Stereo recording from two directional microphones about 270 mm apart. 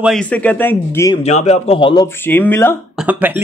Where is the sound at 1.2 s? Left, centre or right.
Left.